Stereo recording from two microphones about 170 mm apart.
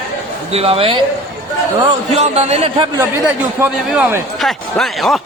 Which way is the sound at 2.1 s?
40° right (ahead or behind).